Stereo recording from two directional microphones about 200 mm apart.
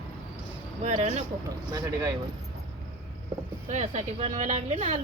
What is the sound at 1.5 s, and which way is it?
Speech, 15° right (ahead or behind).